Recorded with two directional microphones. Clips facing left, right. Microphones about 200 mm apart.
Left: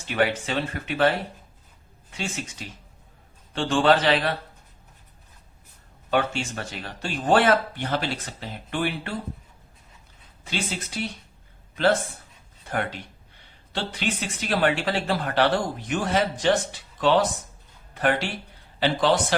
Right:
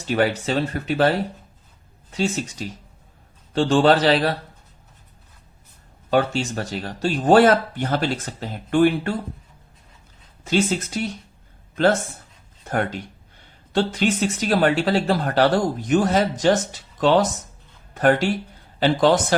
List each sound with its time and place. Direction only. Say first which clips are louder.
0.1 s speech: right 4 dB; 40° right (ahead or behind)
6.1 s speech: right 5 dB; 40° right (ahead or behind)
10.4 s speech: right 10 dB; 45° right (ahead or behind)
12.6 s speech: right 5 dB; 45° right (ahead or behind)